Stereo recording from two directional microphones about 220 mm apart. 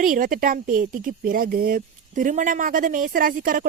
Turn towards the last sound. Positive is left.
turn(degrees=-40)  # may be behind; listen again after turning